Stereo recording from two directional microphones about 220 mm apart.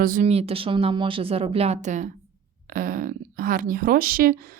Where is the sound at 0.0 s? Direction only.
35° right (ahead or behind).